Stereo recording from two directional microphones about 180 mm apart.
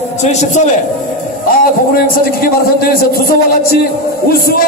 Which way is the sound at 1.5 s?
55° left (ahead or behind).